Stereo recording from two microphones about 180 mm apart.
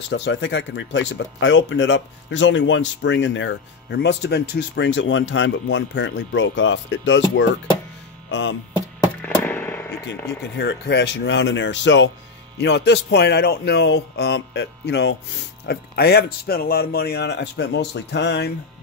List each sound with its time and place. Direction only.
0.1 s speech: 85° left
9.2 s music: 10° left (ahead or behind)
10.6 s speech: 70° left (ahead or behind); by 12.1 s 85° left
12.5 s speech: 70° left (ahead or behind)